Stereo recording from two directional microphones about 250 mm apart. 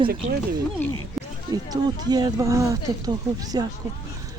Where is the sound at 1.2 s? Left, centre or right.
Centre.